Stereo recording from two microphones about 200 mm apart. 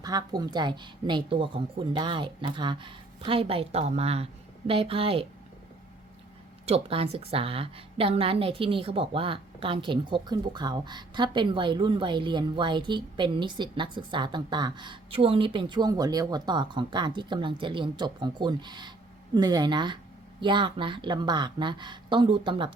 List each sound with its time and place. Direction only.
0.0 s a woman's voice: 20° right (ahead or behind)
6.7 s a woman's voice: 30° right (ahead or behind)